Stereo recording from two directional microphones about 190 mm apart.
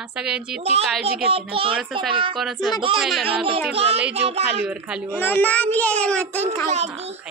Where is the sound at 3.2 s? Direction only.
30° right (ahead or behind).